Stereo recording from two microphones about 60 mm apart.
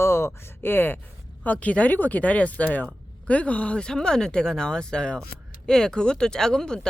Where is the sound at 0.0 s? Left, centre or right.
Left.